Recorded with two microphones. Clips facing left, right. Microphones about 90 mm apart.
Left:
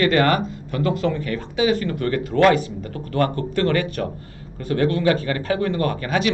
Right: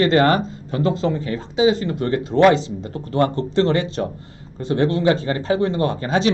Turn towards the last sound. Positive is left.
turn(degrees=-25)  # may be behind; listen again after turning